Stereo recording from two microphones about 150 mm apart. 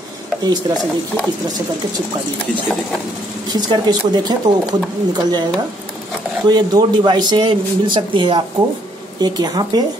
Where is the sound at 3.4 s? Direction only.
25° right (ahead or behind).